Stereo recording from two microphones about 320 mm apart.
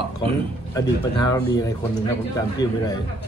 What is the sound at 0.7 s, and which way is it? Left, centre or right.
Speech, centre.